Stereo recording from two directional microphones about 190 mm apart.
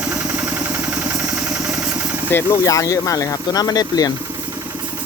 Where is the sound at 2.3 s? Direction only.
15° left (ahead or behind).